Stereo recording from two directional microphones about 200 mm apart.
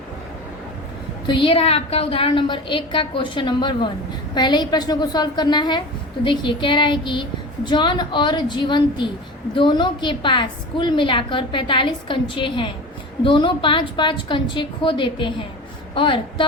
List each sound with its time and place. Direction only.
1.3 s a woman's voice: 25° left (ahead or behind)